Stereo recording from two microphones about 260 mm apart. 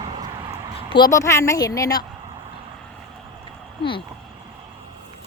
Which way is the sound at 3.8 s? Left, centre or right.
Centre.